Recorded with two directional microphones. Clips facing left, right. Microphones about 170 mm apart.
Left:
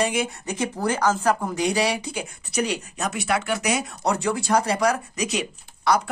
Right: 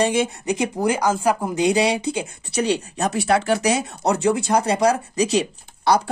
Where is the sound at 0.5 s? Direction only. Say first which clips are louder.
Right 4 dB; 15° right (ahead or behind).